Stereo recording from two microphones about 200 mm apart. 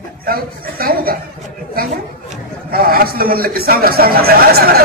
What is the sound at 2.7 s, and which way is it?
A man's voice, 50° right (ahead or behind).